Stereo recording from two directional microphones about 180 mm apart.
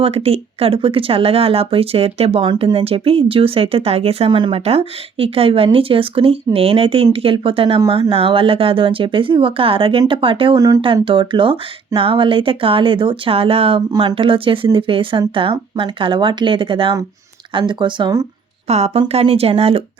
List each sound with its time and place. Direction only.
0.0 s speech: 35° right (ahead or behind)
18.7 s speech: 35° right (ahead or behind)